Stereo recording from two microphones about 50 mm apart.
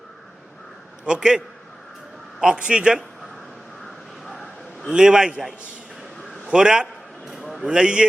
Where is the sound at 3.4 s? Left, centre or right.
Centre.